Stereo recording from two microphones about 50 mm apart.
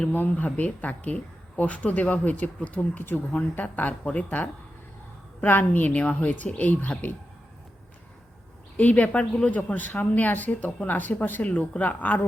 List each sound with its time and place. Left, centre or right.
0.1 s speech: left
8.8 s a woman's voice: left